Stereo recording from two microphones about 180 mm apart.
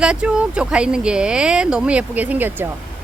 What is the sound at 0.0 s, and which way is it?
Speech, 5° right (ahead or behind).